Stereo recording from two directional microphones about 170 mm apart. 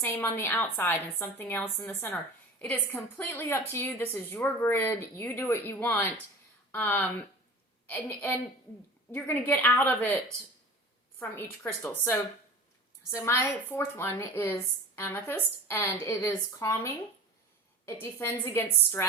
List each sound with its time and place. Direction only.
0.0 s speech: 10° left (ahead or behind)
11.2 s speech: 10° left (ahead or behind)
18.0 s speech: 15° left (ahead or behind)